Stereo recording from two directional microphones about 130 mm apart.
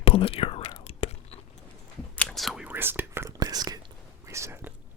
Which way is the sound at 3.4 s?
30° right (ahead or behind).